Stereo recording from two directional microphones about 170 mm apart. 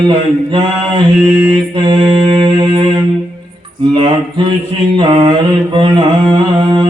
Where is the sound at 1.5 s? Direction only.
25° right (ahead or behind).